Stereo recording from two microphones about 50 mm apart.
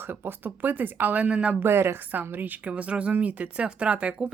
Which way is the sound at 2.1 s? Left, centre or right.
Right.